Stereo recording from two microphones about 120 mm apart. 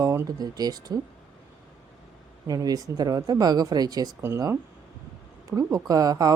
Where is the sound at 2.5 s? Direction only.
30° right (ahead or behind).